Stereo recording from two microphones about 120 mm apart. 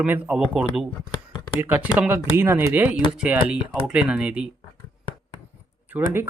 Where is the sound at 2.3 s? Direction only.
20° right (ahead or behind).